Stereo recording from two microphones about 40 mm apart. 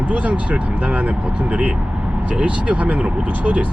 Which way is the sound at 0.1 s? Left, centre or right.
Right.